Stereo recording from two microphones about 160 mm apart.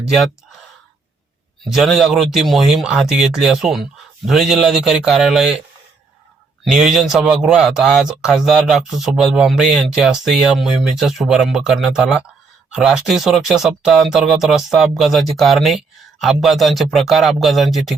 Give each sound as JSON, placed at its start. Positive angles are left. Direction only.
{"t": 0.0, "sound": "speech", "side_deg": 0}
{"t": 1.7, "sound": "speech", "side_deg": 0}
{"t": 6.7, "sound": "speech", "side_deg": 0}